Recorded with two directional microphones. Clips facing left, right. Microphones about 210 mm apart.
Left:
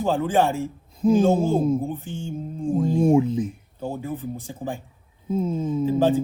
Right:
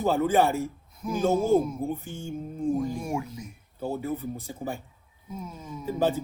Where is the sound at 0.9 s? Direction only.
30° left (ahead or behind).